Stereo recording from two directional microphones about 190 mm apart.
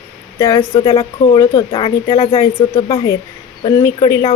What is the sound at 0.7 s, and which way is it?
Speech, 30° left (ahead or behind).